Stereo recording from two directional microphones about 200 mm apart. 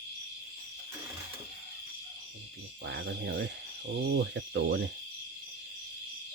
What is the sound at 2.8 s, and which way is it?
Cricket, 60° right (ahead or behind).